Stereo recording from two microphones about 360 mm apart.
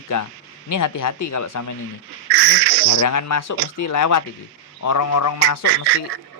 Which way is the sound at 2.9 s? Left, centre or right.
Left.